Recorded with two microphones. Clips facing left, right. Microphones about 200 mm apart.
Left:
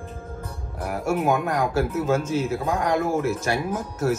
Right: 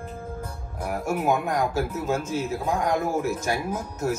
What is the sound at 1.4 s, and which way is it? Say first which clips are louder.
Speech: left 2 dB; 10° left (ahead or behind).